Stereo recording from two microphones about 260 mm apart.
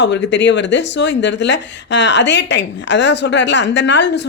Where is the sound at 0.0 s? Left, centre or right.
Left.